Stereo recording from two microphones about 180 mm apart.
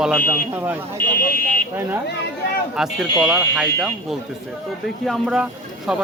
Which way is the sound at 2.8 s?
Centre (ahead or behind).